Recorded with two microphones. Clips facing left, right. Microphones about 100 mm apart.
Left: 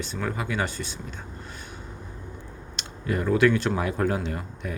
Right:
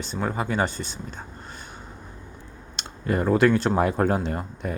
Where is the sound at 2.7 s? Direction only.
40° right (ahead or behind).